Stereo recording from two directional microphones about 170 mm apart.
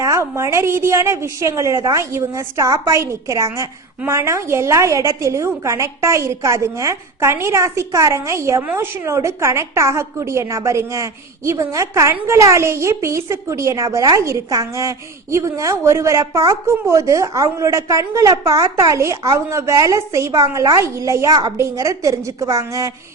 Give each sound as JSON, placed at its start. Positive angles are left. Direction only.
{"t": 0.0, "sound": "a woman's voice", "side_deg": -15}